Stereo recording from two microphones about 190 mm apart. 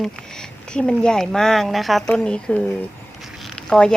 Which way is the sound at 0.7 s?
5° left (ahead or behind).